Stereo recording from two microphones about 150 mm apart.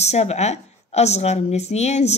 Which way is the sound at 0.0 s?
45° left (ahead or behind).